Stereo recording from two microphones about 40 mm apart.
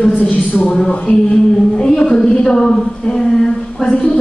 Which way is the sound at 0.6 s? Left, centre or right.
Centre.